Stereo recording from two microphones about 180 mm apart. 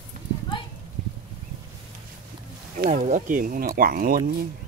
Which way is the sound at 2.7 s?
40° right (ahead or behind).